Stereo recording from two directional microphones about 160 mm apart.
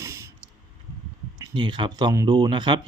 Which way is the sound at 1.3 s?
25° right (ahead or behind).